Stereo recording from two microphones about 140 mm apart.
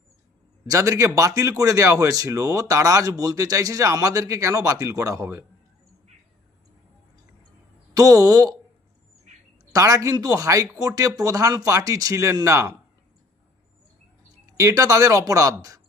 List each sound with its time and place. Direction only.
0.7 s speech: 20° right (ahead or behind)
7.9 s speech: 25° right (ahead or behind)
9.7 s speech: 25° right (ahead or behind)
14.6 s speech: 25° right (ahead or behind)